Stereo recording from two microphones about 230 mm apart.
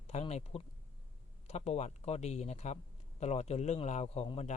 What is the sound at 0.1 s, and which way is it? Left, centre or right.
A man's voice, left.